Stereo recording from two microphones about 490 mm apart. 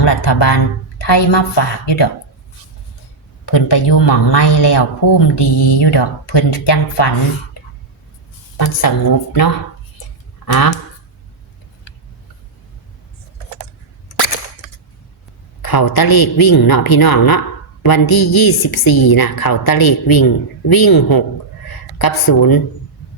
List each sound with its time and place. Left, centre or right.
0.0 s a woman's voice: left
3.4 s speech: left
8.5 s speech: left
10.4 s speech: left
15.6 s a woman's voice: left